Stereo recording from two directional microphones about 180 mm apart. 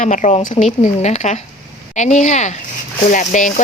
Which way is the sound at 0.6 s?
30° left (ahead or behind).